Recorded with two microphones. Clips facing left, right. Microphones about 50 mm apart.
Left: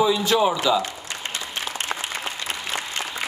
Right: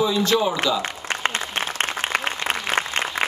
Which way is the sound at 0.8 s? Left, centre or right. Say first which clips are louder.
Right 7 dB; right.